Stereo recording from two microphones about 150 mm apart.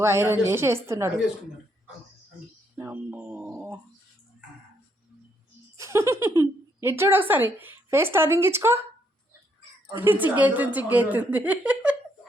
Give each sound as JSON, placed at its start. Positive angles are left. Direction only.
{"t": 0.0, "sound": "speech", "side_deg": -15}
{"t": 2.7, "sound": "speech", "side_deg": -15}
{"t": 5.7, "sound": "a sound", "side_deg": -20}
{"t": 6.8, "sound": "speech", "side_deg": -15}
{"t": 9.9, "sound": "speech", "side_deg": -15}